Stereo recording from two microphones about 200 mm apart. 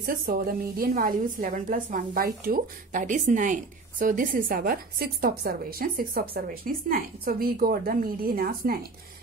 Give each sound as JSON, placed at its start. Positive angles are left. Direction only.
{"t": 0.0, "sound": "a woman's voice", "side_deg": -45}